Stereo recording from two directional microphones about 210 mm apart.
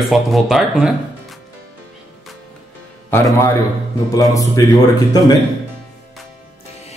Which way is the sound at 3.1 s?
10° left (ahead or behind).